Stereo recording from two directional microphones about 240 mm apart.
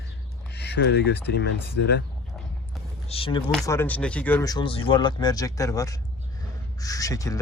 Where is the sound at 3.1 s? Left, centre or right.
Left.